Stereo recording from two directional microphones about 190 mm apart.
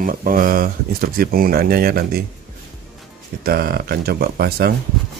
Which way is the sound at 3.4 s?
50° right (ahead or behind).